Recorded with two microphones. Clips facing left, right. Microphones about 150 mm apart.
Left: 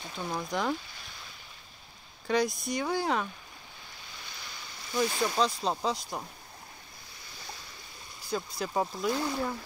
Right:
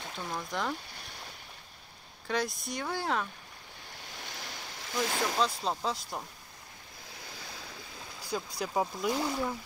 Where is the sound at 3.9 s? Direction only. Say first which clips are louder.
Right 5 dB; 80° right.